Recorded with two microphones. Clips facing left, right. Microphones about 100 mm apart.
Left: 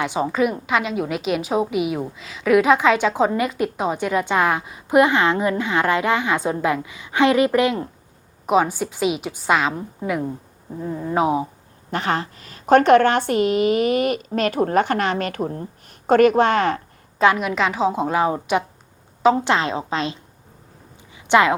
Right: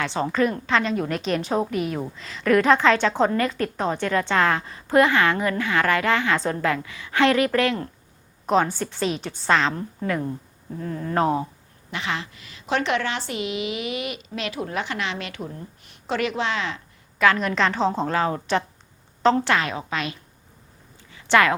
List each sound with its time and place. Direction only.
0.0 s a woman's voice: 10° left (ahead or behind)
11.9 s speech: 45° left (ahead or behind)
17.3 s a woman's voice: 5° left (ahead or behind)
19.5 s a woman's voice: 25° left (ahead or behind)
21.2 s speech: 20° left (ahead or behind)